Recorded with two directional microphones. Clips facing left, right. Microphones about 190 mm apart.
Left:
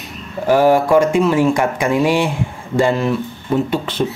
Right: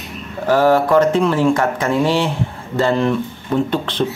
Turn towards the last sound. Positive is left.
turn(degrees=10)  # may be behind; listen again after turning